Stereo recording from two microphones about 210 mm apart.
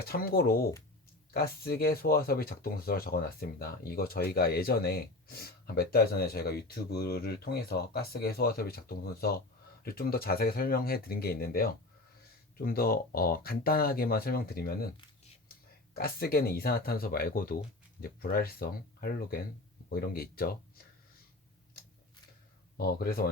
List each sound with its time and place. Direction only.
0.0 s speech: 45° left (ahead or behind)
16.0 s speech: 45° left (ahead or behind)
22.8 s speech: 45° left (ahead or behind)